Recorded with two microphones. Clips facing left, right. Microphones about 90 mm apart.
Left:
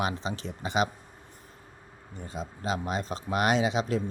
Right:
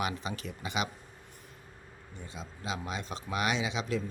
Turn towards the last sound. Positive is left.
turn(degrees=40)  # may be behind; listen again after turning